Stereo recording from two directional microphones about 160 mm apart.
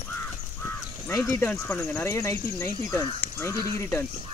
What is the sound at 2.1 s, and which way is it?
Speech, 20° left (ahead or behind).